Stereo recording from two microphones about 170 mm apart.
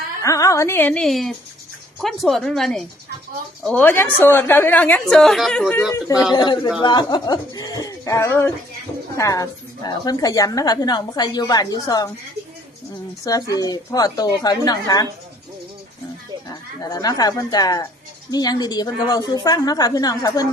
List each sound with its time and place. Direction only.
0.2 s a woman's voice: 20° left (ahead or behind); by 3.8 s centre (ahead or behind)
3.8 s a woman's voice: 10° left (ahead or behind)
5.9 s a woman's voice: 20° left (ahead or behind)
13.2 s a woman's voice: 20° left (ahead or behind)
16.5 s a woman's voice: 20° left (ahead or behind)